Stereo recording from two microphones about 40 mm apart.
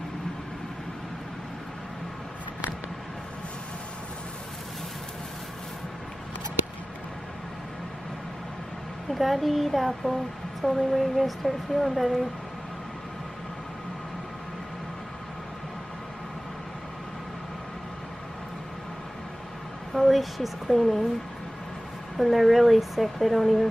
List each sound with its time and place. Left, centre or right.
9.1 s speech: centre
19.9 s speech: centre
22.1 s speech: centre